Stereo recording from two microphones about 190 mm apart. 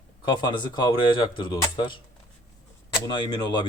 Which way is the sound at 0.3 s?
20° left (ahead or behind).